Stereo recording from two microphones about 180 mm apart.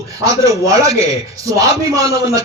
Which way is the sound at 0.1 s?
20° right (ahead or behind).